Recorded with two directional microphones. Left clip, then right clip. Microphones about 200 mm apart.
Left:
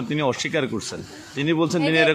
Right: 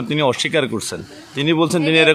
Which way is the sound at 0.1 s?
35° right (ahead or behind).